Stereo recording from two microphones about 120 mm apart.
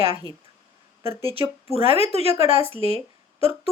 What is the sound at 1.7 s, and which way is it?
Speech, 55° right (ahead or behind).